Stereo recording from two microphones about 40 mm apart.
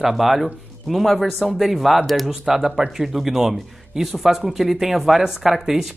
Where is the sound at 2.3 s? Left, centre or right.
Centre.